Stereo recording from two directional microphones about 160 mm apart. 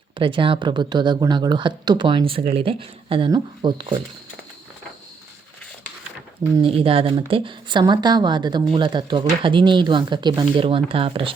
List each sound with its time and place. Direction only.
0.2 s speech: 30° right (ahead or behind)
6.6 s speech: 35° right (ahead or behind)